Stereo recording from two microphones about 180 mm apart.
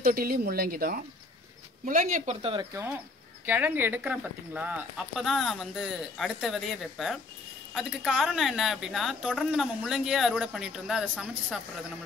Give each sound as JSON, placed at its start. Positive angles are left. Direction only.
{"t": 0.0, "sound": "speech", "side_deg": -55}
{"t": 2.7, "sound": "speech", "side_deg": -20}